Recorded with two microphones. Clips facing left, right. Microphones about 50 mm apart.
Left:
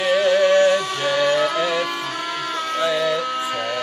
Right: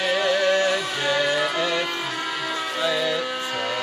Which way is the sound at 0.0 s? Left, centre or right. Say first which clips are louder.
Left 5 dB; centre.